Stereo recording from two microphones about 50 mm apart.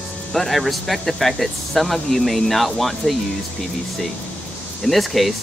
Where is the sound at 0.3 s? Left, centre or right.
Centre.